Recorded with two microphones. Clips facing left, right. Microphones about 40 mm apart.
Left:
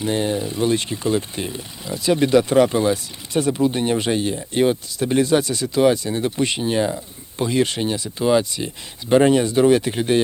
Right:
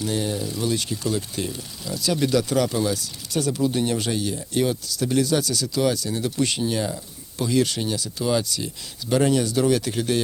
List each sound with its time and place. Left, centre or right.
0.0 s speech: left